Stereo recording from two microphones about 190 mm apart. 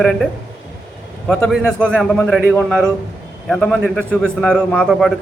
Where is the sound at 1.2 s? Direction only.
Centre (ahead or behind).